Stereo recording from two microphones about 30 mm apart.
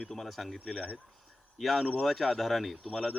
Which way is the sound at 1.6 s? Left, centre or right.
Centre.